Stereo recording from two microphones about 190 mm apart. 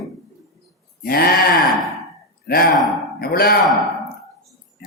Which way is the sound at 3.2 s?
50° left (ahead or behind).